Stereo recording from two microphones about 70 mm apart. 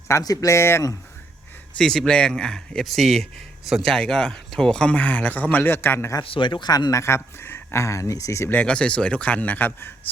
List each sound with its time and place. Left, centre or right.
0.1 s speech: left
1.8 s a man's voice: centre; by 6.1 s left
6.1 s speech: left
6.9 s speech: left
8.6 s a man's voice: centre